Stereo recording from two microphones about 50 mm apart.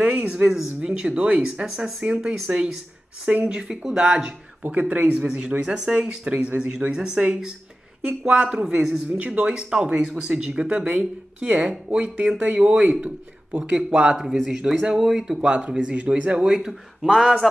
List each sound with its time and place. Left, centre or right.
0.0 s speech: right
3.3 s speech: right
3.6 s speech: centre
4.6 s speech: right; by 7.2 s centre
8.4 s speech: right
13.7 s speech: centre
14.1 s speech: centre
14.6 s speech: right
15.0 s speech: centre
15.4 s speech: right